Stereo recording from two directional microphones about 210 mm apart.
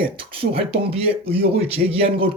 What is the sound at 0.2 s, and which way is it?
Speech, 25° right (ahead or behind).